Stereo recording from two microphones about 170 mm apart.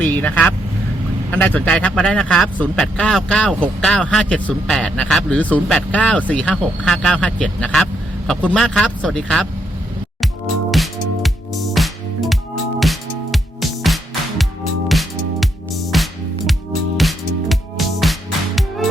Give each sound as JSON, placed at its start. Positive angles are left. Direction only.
{"t": 0.0, "sound": "speech", "side_deg": 10}
{"t": 10.7, "sound": "music", "side_deg": 0}